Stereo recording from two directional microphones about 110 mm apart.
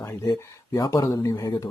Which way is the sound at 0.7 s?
35° left (ahead or behind).